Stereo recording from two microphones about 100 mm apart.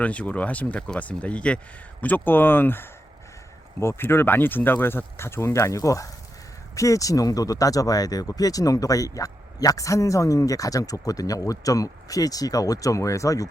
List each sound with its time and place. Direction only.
0.0 s speech: 15° left (ahead or behind); by 13.5 s 35° left (ahead or behind)